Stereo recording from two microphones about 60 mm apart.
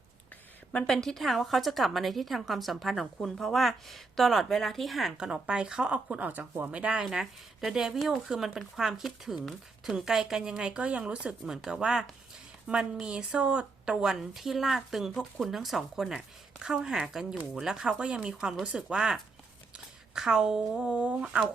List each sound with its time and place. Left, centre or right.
0.7 s a woman's voice: centre
5.1 s speech: centre
13.9 s a woman's voice: centre